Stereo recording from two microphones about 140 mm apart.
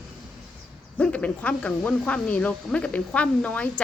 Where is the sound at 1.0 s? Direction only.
10° left (ahead or behind).